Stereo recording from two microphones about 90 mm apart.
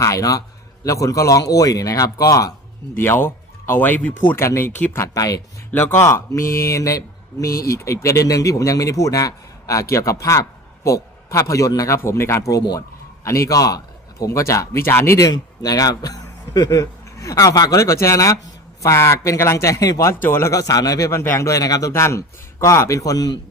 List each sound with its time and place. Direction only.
0.0 s speech: 40° left (ahead or behind)
2.9 s speech: 25° left (ahead or behind)
5.1 s speech: 40° left (ahead or behind)
15.2 s a man's voice: 45° left (ahead or behind)
17.7 s speech: 35° left (ahead or behind)
20.1 s speech: 30° left (ahead or behind)
20.5 s speech: 40° left (ahead or behind)
21.1 s speech: 30° left (ahead or behind)